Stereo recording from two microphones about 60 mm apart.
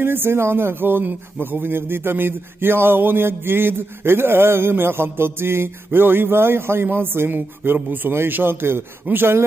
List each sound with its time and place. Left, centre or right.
0.0 s speech: right